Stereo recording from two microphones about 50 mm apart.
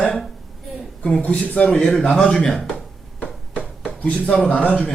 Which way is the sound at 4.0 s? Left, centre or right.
Left.